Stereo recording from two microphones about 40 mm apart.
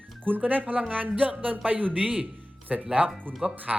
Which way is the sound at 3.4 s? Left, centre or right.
Right.